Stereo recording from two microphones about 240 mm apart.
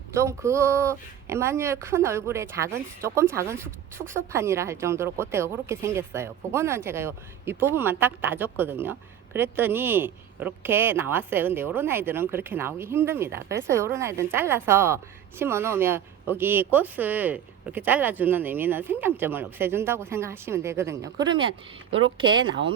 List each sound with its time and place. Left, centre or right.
0.1 s speech: centre